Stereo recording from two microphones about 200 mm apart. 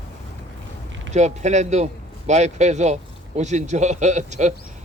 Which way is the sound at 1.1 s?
35° right (ahead or behind).